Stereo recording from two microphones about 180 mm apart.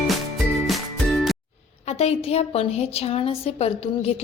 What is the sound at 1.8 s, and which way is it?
A woman's voice, 35° left (ahead or behind).